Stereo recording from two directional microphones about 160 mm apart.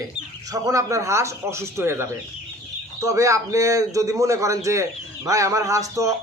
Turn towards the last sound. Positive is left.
turn(degrees=-20)  # may be behind; listen again after turning